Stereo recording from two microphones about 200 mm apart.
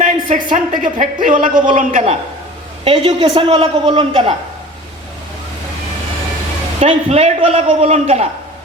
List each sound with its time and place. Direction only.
0.0 s a sound: 40° right (ahead or behind)
0.5 s a man's voice: 40° right (ahead or behind)
2.8 s a man's voice: 25° right (ahead or behind)
6.7 s a man's voice: 30° right (ahead or behind)